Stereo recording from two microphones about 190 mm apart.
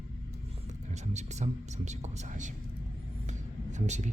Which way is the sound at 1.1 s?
35° right (ahead or behind).